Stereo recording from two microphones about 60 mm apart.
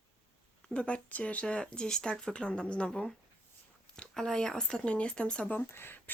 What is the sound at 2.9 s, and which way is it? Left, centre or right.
Speech, centre.